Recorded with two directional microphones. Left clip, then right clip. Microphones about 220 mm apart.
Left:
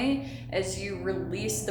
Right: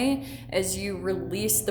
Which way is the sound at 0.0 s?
50° right (ahead or behind).